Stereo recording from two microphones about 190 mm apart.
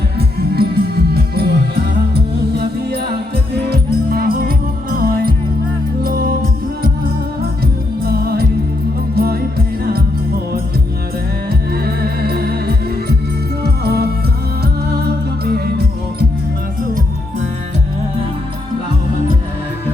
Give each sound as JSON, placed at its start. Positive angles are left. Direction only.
{"t": 0.2, "sound": "music", "side_deg": -55}
{"t": 8.0, "sound": "music", "side_deg": -55}
{"t": 11.9, "sound": "music", "side_deg": -55}